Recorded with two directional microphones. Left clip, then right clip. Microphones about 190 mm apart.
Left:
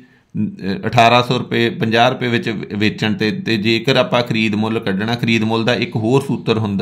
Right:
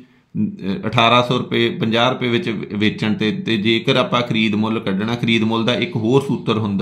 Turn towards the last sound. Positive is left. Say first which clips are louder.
# left 2 dB
turn(degrees=35)  # may be behind; listen again after turning